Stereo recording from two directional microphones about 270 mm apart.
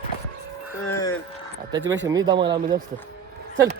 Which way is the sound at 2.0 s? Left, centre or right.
Centre.